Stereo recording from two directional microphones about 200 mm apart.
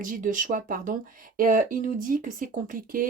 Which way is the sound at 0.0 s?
40° right (ahead or behind).